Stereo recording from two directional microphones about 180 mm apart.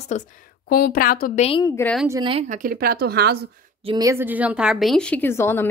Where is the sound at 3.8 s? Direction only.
20° right (ahead or behind); by 5.7 s 10° left (ahead or behind).